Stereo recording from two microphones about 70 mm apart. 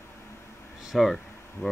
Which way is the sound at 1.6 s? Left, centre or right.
Left.